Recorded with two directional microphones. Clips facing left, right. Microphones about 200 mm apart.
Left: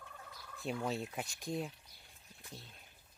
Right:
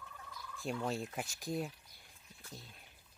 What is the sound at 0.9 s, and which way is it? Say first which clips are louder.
Speech: even; centre (ahead or behind).